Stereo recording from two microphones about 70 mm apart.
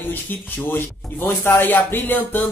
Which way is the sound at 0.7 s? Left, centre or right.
Left.